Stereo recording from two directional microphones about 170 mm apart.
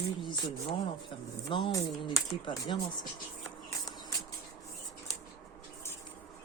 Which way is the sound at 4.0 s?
20° left (ahead or behind).